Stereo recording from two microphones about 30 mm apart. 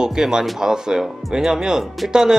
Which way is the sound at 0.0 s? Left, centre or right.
Right.